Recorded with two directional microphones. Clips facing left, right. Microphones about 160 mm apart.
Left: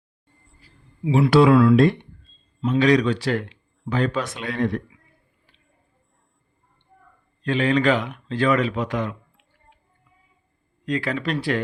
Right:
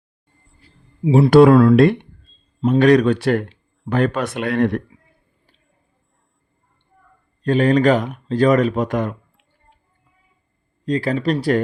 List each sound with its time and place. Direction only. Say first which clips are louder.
1.0 s speech: right 5 dB; 30° right (ahead or behind)
1.3 s speech: right 5 dB; 45° right (ahead or behind)
1.7 s speech: right 4 dB; 65° right (ahead or behind)
2.6 s speech: right 5 dB; 50° right (ahead or behind)
7.4 s speech: right 5 dB; 45° right (ahead or behind)
10.8 s speech: right 6 dB; 35° right (ahead or behind)